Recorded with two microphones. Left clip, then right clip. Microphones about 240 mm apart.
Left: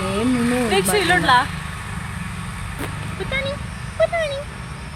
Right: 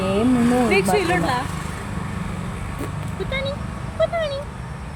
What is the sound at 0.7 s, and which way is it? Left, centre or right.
Speech, centre.